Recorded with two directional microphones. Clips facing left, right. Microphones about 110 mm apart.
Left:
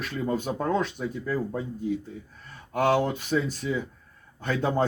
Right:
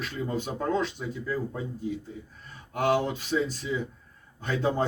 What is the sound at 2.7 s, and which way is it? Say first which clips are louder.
Speech: left 2 dB; 50° left (ahead or behind).